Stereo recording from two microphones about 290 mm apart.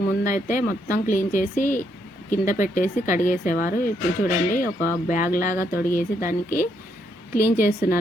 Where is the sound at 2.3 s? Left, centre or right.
Left.